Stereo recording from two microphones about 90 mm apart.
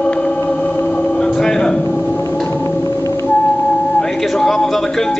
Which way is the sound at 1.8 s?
20° left (ahead or behind).